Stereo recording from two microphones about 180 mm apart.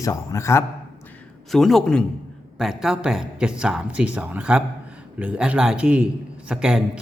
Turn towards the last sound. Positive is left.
turn(degrees=-5)  # may be behind; listen again after turning